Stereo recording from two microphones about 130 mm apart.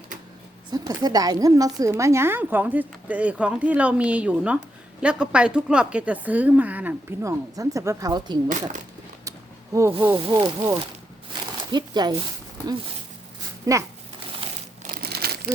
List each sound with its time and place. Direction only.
0.7 s a woman's voice: 30° right (ahead or behind); by 7.3 s 15° right (ahead or behind)
7.3 s a woman's voice: 25° right (ahead or behind)
8.4 s speech: 75° right (ahead or behind)
9.7 s a woman's voice: 25° right (ahead or behind)
10.1 s speech: 40° right (ahead or behind)
13.7 s a woman's voice: 25° right (ahead or behind)
14.4 s a sound: 45° right (ahead or behind)